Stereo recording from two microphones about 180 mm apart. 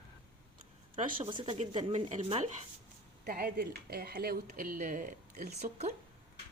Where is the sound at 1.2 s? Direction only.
25° right (ahead or behind).